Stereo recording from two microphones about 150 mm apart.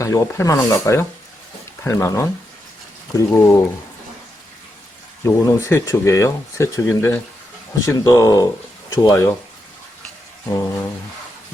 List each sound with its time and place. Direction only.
0.0 s speech: 20° left (ahead or behind)
5.2 s speech: 20° left (ahead or behind)